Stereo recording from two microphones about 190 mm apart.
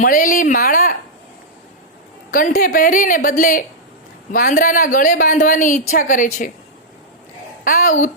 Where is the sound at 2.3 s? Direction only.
45° left (ahead or behind).